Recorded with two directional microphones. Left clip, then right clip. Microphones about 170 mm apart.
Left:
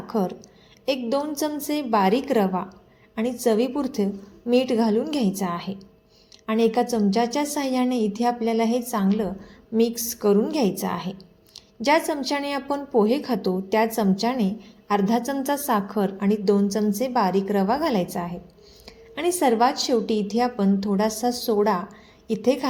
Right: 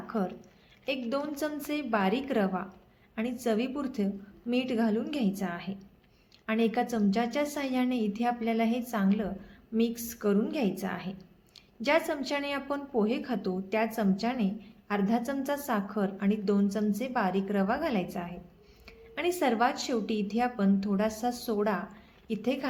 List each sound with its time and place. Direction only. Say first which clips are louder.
0.1 s a woman's voice: left 8 dB; 20° left (ahead or behind)